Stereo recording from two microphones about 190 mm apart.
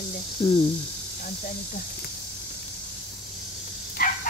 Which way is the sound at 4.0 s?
50° left (ahead or behind).